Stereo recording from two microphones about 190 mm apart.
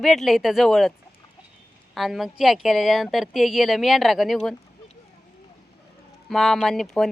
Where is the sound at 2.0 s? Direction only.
Centre (ahead or behind).